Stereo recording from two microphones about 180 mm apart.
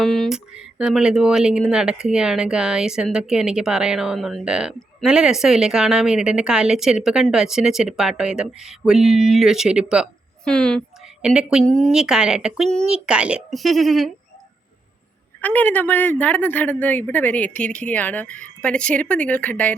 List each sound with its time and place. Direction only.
0.0 s speech: centre (ahead or behind)
15.4 s speech: 10° left (ahead or behind)